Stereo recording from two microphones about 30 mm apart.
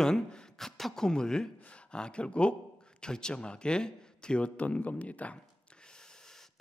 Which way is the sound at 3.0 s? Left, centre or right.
Left.